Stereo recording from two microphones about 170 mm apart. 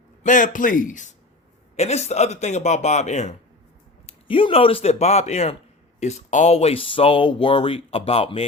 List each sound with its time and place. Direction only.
0.2 s speech: 50° left (ahead or behind)
4.0 s speech: 30° left (ahead or behind)